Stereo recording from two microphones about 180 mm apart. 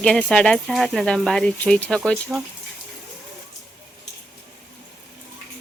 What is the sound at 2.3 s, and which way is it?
Speech, 5° right (ahead or behind).